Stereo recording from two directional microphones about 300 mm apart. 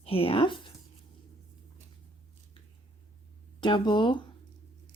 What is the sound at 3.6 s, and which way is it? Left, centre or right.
Speech, centre.